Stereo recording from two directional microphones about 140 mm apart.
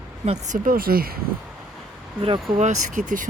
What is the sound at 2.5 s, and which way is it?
Speech, 60° right (ahead or behind).